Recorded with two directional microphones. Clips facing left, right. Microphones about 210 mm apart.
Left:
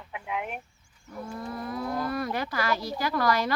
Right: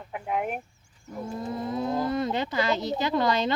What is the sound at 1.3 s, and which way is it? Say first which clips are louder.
Speech: right 4 dB; 25° right (ahead or behind).